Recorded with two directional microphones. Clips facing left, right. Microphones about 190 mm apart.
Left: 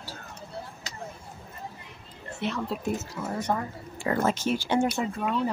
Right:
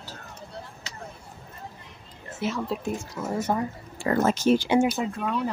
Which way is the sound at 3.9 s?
35° right (ahead or behind).